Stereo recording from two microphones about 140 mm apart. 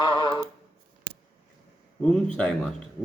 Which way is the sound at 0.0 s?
30° left (ahead or behind).